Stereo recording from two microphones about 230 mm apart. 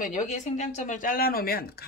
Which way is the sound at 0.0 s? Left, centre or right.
Left.